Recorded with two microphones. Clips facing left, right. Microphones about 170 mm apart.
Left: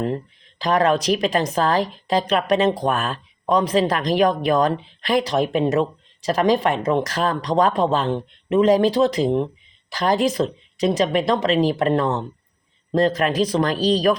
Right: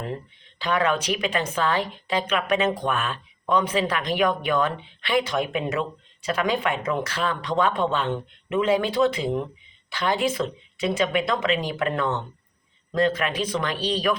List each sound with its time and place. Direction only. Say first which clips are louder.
0.6 s a woman's voice: left 5 dB; 40° left (ahead or behind)